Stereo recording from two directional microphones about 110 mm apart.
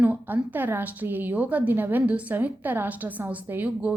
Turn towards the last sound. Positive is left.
turn(degrees=-15)  # may be behind; listen again after turning